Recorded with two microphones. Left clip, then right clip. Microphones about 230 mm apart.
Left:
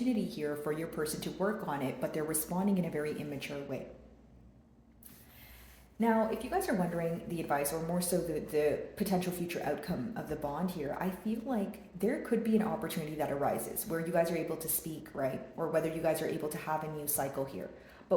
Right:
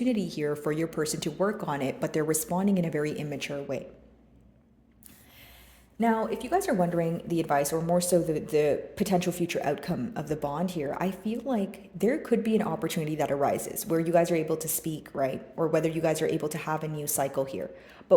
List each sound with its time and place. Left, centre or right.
0.0 s speech: right
6.0 s speech: right